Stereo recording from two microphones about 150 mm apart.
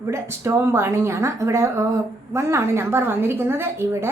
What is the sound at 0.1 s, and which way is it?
A woman's voice, 15° right (ahead or behind).